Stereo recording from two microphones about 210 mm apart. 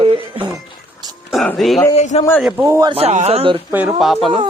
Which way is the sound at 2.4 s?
5° right (ahead or behind).